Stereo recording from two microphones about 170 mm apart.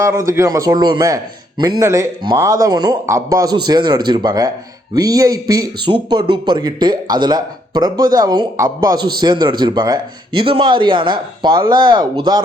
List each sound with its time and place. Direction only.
0.0 s a man's voice: 20° right (ahead or behind)